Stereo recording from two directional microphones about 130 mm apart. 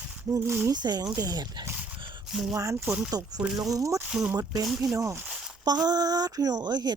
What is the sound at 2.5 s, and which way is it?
Speech, 20° right (ahead or behind).